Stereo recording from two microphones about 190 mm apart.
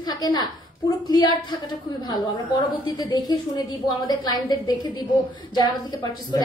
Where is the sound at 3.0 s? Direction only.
20° left (ahead or behind).